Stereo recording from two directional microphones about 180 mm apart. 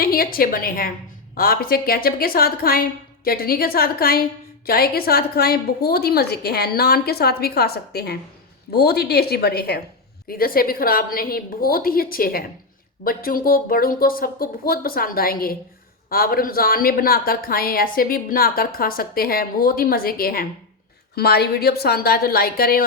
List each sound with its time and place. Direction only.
0.0 s a woman's voice: 55° left (ahead or behind)